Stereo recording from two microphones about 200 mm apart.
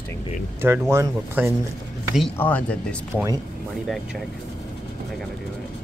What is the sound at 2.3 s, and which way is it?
Speech, 10° left (ahead or behind).